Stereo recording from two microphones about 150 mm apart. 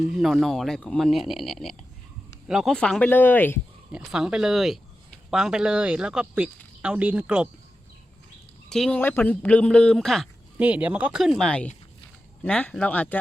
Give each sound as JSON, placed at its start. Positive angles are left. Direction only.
{"t": 0.1, "sound": "a man's voice", "side_deg": 0}
{"t": 3.9, "sound": "speech", "side_deg": -5}
{"t": 8.7, "sound": "a man's voice", "side_deg": 0}
{"t": 10.6, "sound": "a man's voice", "side_deg": -10}